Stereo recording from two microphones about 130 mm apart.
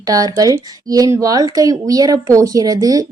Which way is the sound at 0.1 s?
30° right (ahead or behind).